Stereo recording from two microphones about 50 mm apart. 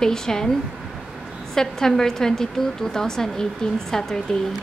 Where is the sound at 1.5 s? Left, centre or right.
Centre.